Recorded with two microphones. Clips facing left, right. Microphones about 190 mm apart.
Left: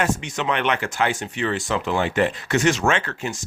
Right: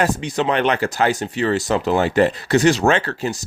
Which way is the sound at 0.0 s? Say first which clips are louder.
Right 4 dB; 35° right (ahead or behind).